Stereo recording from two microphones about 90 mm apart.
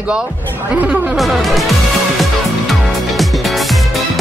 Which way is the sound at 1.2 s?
Centre (ahead or behind).